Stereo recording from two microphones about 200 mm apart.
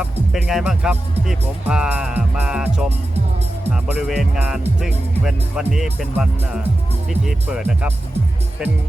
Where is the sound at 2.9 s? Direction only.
30° right (ahead or behind).